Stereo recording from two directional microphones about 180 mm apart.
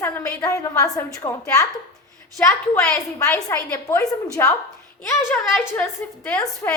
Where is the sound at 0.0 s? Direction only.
15° left (ahead or behind).